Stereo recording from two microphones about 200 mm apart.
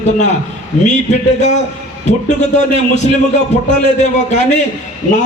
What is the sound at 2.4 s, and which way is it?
Speech, 35° left (ahead or behind).